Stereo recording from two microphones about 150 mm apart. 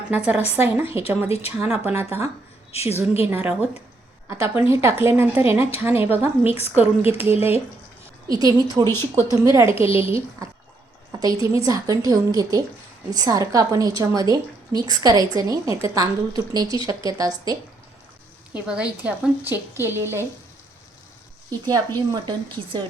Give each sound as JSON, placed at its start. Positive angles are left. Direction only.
{"t": 0.5, "sound": "a woman's voice", "side_deg": -15}
{"t": 1.3, "sound": "speech", "side_deg": 45}
{"t": 1.5, "sound": "a woman's voice", "side_deg": -15}
{"t": 2.7, "sound": "speech", "side_deg": 45}
{"t": 3.2, "sound": "a woman's voice", "side_deg": -15}
{"t": 8.3, "sound": "a woman's voice", "side_deg": -25}
{"t": 8.8, "sound": "speech", "side_deg": 15}
{"t": 9.3, "sound": "a woman's voice", "side_deg": -20}
{"t": 18.5, "sound": "a woman's voice", "side_deg": -5}
{"t": 21.5, "sound": "a woman's voice", "side_deg": -25}